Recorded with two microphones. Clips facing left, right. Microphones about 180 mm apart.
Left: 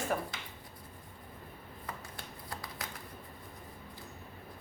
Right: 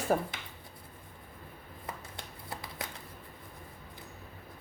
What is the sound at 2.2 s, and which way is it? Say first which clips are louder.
Shuffling cards: right 1 dB; 25° right (ahead or behind).